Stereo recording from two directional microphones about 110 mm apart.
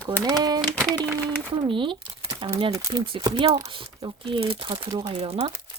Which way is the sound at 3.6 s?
55° right (ahead or behind).